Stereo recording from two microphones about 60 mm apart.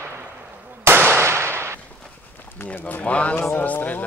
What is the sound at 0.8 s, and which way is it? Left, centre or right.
Firecracker, right.